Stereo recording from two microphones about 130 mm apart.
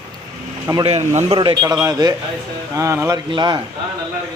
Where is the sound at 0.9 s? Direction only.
55° right (ahead or behind).